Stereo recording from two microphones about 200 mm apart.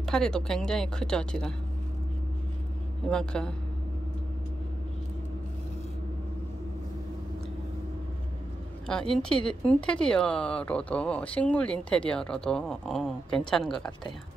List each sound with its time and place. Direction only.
0.0 s speech: 5° left (ahead or behind)
3.1 s speech: 5° left (ahead or behind)
8.8 s speech: 5° left (ahead or behind)